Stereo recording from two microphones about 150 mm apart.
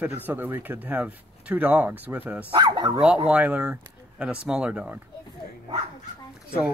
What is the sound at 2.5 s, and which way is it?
Speech, 30° right (ahead or behind).